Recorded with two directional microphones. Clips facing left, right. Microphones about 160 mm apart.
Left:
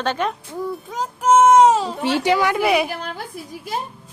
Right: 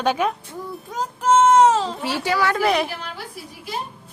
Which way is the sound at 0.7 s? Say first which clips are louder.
Left 1 dB; 10° left (ahead or behind).